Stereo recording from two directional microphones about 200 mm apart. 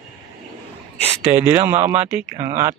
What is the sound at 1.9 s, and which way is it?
Speech, 10° right (ahead or behind).